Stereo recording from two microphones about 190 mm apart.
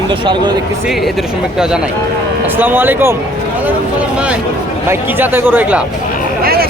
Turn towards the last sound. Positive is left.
turn(degrees=-50)  # may be behind; listen again after turning